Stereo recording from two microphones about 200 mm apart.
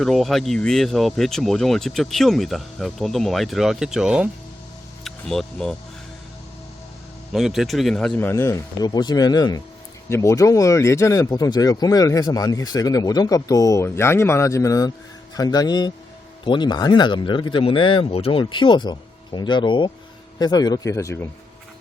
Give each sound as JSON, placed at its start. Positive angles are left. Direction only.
{"t": 0.0, "sound": "speech", "side_deg": 0}
{"t": 7.3, "sound": "speech", "side_deg": 0}